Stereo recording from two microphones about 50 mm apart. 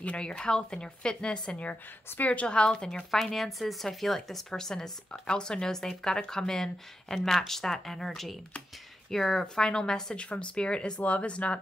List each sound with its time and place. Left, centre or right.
0.0 s a woman's voice: left
2.1 s a woman's voice: left
2.4 s speech: centre
3.1 s a woman's voice: centre
10.1 s speech: left